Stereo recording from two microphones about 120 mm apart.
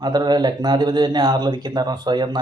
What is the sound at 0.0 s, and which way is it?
A man's voice, 35° right (ahead or behind).